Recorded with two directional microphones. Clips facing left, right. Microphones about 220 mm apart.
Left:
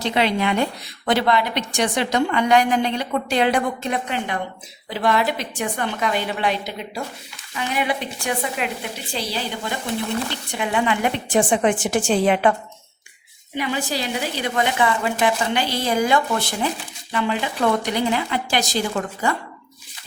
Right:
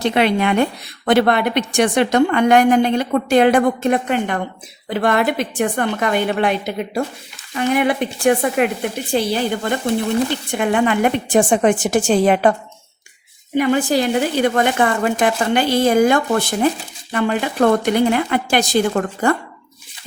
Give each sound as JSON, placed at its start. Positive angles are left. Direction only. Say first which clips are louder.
{"t": 0.0, "sound": "a woman's voice", "louder": "right 4 dB", "side_deg": -55}
{"t": 13.6, "sound": "a woman's voice", "louder": "right 9 dB", "side_deg": -50}